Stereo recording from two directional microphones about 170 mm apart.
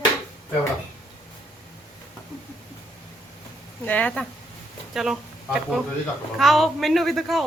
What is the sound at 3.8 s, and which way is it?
Speech, 10° left (ahead or behind).